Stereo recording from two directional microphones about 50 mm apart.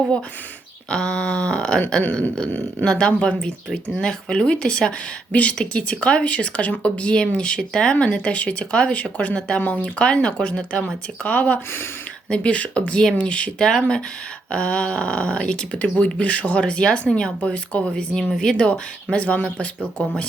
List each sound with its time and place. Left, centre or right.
0.9 s speech: centre
2.8 s speech: centre
11.2 s speech: left